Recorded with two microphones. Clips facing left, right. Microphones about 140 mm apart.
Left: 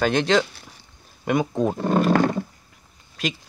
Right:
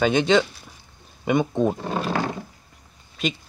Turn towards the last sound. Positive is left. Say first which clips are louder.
# right 1 dB
turn(degrees=0)  # may be behind; listen again after turning